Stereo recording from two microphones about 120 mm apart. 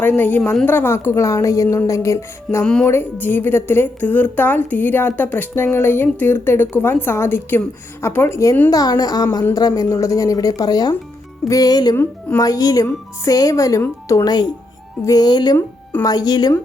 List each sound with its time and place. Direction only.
0.0 s speech: 15° left (ahead or behind)
2.6 s speech: 10° left (ahead or behind); by 15.5 s 35° left (ahead or behind)
15.5 s speech: 15° left (ahead or behind)
16.0 s speech: 35° left (ahead or behind)